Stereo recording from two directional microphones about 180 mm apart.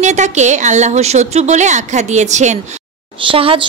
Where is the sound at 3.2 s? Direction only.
30° right (ahead or behind).